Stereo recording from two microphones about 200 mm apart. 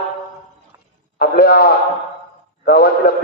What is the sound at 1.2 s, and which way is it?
A man's voice, 50° left (ahead or behind).